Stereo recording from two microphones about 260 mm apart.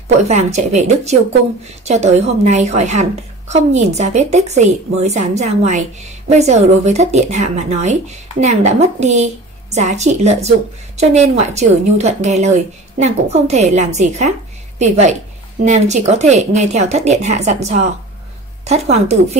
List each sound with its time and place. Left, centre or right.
0.2 s speech: right